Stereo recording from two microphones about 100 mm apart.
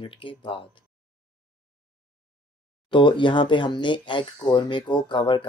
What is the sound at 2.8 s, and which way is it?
Speech, 55° left (ahead or behind).